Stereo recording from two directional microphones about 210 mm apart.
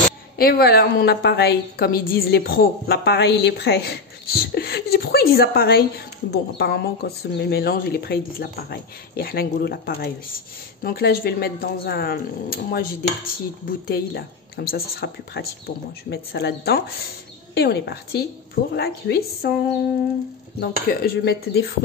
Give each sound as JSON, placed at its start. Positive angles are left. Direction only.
{"t": 0.4, "sound": "a woman's voice", "side_deg": 45}
{"t": 20.6, "sound": "a woman's voice", "side_deg": 45}